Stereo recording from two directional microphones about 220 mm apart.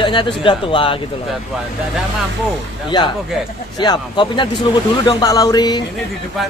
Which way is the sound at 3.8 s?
20° left (ahead or behind).